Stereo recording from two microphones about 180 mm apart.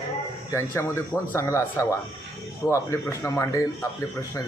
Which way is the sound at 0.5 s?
15° left (ahead or behind).